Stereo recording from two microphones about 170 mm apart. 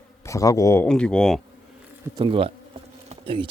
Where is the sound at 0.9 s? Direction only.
5° left (ahead or behind).